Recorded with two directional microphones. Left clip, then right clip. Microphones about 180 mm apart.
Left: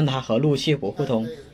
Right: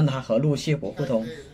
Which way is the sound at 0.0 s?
25° left (ahead or behind).